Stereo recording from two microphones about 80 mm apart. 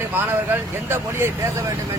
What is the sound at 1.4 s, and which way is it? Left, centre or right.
Speech, right.